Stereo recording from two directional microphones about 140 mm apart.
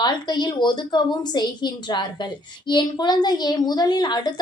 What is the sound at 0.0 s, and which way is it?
A woman's voice, 30° left (ahead or behind).